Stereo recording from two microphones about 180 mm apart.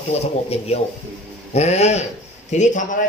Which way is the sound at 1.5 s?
35° left (ahead or behind).